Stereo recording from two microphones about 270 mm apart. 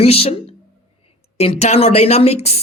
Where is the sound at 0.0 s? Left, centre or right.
Left.